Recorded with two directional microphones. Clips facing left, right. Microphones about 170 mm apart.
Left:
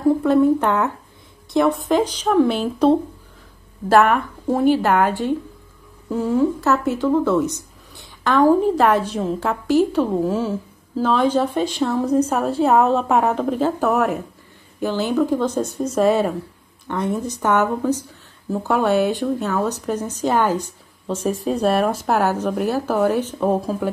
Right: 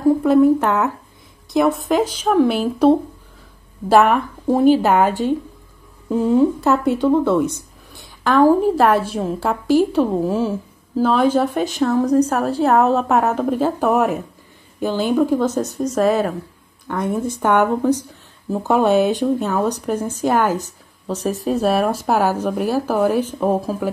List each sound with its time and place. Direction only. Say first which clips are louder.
0.2 s a woman's voice: right 2 dB; 5° right (ahead or behind)
17.4 s speech: right 3 dB; 15° right (ahead or behind)